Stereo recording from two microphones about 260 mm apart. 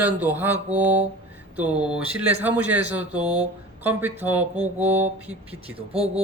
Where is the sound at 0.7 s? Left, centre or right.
Centre.